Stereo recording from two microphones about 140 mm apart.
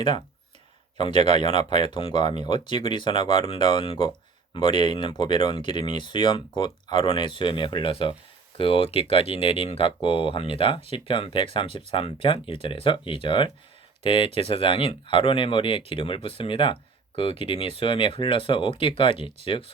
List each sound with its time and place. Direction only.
0.9 s a man's voice: 35° left (ahead or behind)